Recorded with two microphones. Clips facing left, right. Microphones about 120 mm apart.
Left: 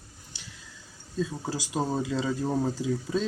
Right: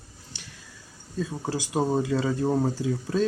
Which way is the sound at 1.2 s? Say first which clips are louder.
Right 1 dB; 15° right (ahead or behind).